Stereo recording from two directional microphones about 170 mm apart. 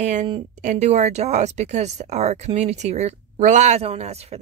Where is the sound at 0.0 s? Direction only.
45° right (ahead or behind).